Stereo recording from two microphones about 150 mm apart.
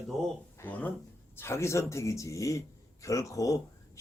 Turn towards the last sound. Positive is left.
turn(degrees=20)  # may be behind; listen again after turning